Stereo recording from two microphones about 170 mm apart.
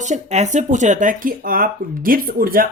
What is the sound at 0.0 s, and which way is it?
Speech, 40° right (ahead or behind).